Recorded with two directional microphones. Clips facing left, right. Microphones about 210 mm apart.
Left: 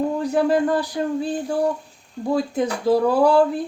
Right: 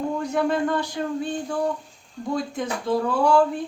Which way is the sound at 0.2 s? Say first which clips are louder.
Left 4 dB; 35° left (ahead or behind).